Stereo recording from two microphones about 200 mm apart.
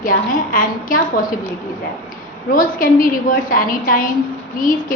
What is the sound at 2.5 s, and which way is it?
A woman's voice, 45° left (ahead or behind).